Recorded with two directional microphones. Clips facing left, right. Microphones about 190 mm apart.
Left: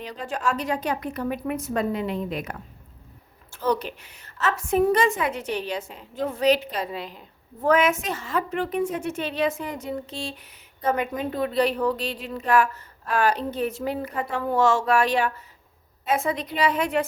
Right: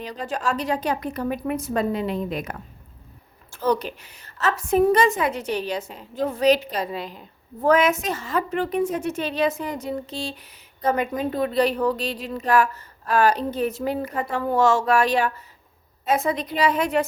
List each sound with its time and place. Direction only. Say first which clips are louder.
0.0 s a woman's voice: right 1 dB; 40° right (ahead or behind)